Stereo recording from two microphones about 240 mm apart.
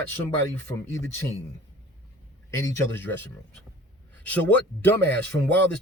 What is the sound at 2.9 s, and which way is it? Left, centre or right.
A man's voice, centre.